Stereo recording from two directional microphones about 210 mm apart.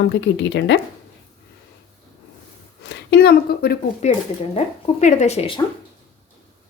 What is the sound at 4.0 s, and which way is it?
Speech, 35° left (ahead or behind).